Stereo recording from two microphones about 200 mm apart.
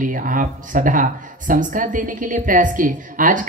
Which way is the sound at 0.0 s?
40° right (ahead or behind).